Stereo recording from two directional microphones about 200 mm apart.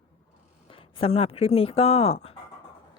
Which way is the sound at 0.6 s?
25° left (ahead or behind).